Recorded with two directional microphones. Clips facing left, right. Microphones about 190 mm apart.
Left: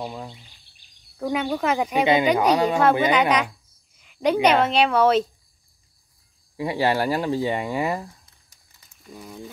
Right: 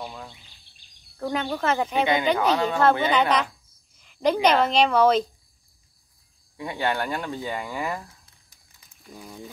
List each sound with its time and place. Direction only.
0.0 s speech: 25° left (ahead or behind)
1.1 s speech: 10° left (ahead or behind)
6.5 s speech: 30° left (ahead or behind)
9.1 s speech: centre (ahead or behind)